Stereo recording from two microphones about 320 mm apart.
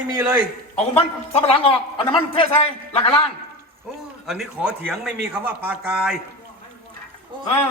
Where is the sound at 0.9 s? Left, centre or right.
Centre.